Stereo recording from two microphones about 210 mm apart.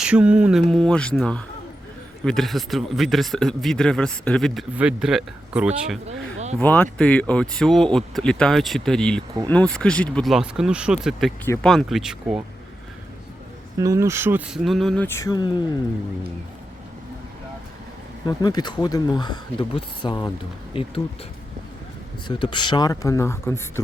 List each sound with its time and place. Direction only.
0.0 s speech: 5° right (ahead or behind)
6.6 s speech: 10° left (ahead or behind)
13.7 s speech: 15° right (ahead or behind); by 15.8 s 20° left (ahead or behind)
18.3 s speech: 20° left (ahead or behind)
22.3 s speech: 20° left (ahead or behind)